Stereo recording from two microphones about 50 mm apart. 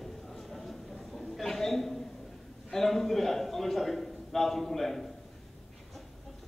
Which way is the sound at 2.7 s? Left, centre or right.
Centre.